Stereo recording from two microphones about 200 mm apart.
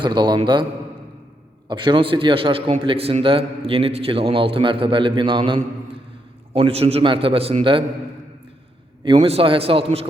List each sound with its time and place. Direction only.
0.0 s a man's voice: 20° right (ahead or behind)
1.6 s a man's voice: 25° right (ahead or behind)
9.0 s a man's voice: 25° right (ahead or behind)